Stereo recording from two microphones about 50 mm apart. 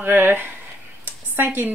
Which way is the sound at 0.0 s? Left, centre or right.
Right.